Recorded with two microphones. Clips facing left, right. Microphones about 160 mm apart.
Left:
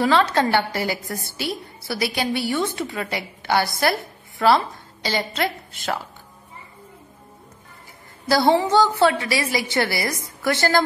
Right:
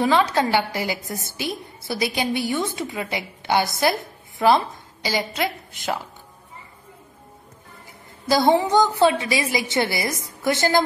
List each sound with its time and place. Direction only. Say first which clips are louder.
0.0 s a woman's voice: left 1 dB; 15° right (ahead or behind)
8.3 s a woman's voice: even; 20° right (ahead or behind)